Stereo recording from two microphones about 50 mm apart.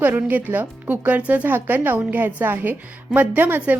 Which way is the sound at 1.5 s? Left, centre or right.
Right.